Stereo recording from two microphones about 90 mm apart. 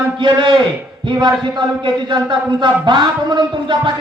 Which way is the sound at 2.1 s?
60° right (ahead or behind).